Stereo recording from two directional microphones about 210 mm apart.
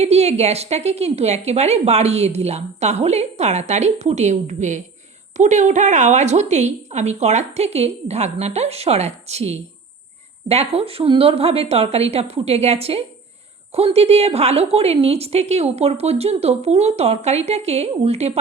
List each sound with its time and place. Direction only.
0.0 s a woman's voice: 30° right (ahead or behind)